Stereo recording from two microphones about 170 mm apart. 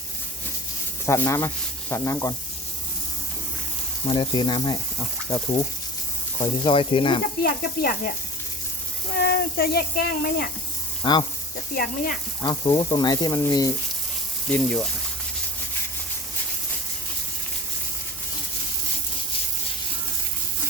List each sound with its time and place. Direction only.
1.0 s speech: 15° left (ahead or behind)
4.0 s speech: 30° left (ahead or behind)
6.4 s sizzle: 30° left (ahead or behind)
7.2 s speech: 60° left (ahead or behind)
9.1 s speech: 75° left (ahead or behind)
11.0 s speech: 25° left (ahead or behind)
11.7 s speech: 60° left (ahead or behind)
12.4 s speech: 25° left (ahead or behind)
14.4 s speech: 5° left (ahead or behind)